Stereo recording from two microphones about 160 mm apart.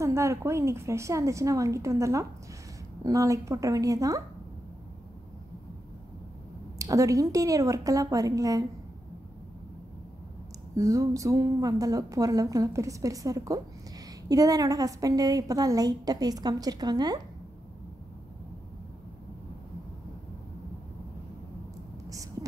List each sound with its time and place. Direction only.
0.0 s a woman's voice: 20° right (ahead or behind)
6.8 s a woman's voice: 20° right (ahead or behind)
10.8 s a woman's voice: 20° right (ahead or behind)
22.1 s a sound: 20° right (ahead or behind)